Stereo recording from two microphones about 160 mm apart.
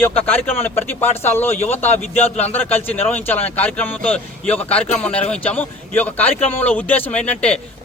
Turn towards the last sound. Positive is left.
turn(degrees=5)  # may be behind; listen again after turning